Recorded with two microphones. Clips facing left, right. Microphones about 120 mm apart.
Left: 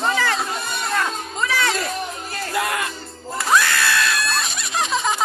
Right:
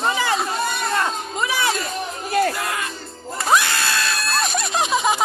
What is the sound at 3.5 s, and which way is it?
Crowd, 25° right (ahead or behind).